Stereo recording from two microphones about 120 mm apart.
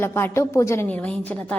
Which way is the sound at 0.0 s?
20° left (ahead or behind).